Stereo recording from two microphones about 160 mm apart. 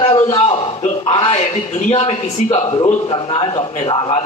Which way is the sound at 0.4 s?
30° left (ahead or behind).